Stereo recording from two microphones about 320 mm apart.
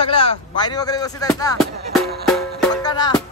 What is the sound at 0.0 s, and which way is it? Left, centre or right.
A man's voice, centre.